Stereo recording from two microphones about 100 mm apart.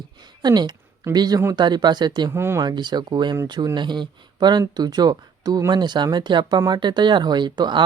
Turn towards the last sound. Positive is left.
turn(degrees=-45)  # may be behind; listen again after turning